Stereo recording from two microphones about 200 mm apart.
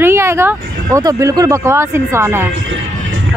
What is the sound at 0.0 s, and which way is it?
Speech, 10° right (ahead or behind).